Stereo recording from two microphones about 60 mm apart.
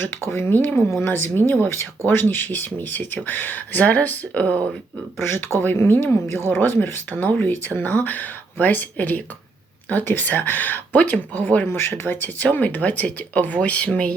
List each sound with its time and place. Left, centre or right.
0.3 s speech: left
5.6 s speech: left
11.6 s speech: left